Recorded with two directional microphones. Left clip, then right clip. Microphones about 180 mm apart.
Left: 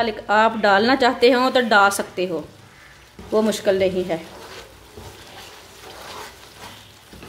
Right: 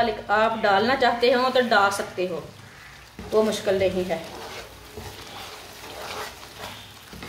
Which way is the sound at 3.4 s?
55° left (ahead or behind).